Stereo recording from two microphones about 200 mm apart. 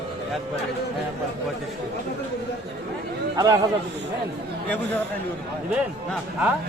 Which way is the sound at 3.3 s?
20° right (ahead or behind).